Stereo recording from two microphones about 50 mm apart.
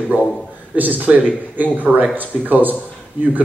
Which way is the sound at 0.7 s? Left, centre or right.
Right.